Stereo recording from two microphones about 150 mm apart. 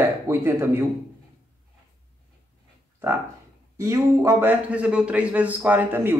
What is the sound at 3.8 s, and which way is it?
A man's voice, 20° right (ahead or behind).